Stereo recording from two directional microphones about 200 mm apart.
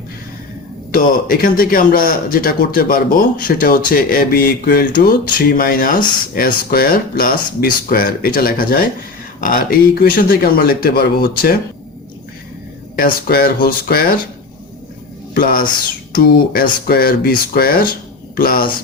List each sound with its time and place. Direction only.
0.9 s speech: 45° left (ahead or behind)
13.0 s speech: 45° left (ahead or behind)
15.4 s speech: 45° left (ahead or behind)